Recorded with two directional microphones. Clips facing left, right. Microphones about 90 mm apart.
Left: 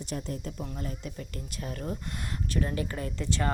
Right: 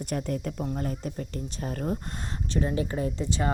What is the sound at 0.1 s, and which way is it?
Speech, 55° right (ahead or behind).